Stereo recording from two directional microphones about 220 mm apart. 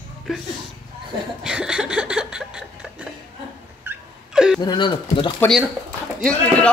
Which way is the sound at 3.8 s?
5° right (ahead or behind).